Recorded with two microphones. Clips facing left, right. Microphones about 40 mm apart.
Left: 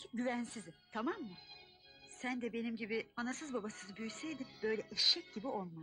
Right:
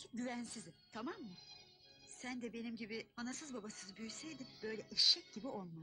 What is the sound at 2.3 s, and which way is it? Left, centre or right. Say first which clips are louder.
Speech: left 5 dB; centre.